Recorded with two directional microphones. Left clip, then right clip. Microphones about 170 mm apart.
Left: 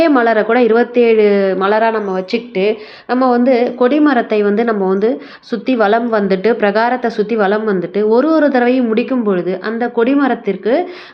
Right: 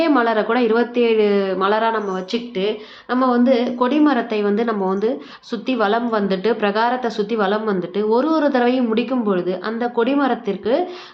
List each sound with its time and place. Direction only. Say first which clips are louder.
0.0 s a woman's voice: left 6 dB; 20° left (ahead or behind)